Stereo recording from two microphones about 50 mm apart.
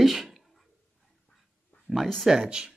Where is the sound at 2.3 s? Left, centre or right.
Centre.